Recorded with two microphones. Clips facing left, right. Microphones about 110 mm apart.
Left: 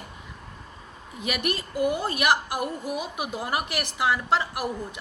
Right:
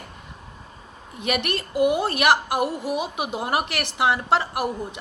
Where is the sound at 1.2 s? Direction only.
60° right (ahead or behind).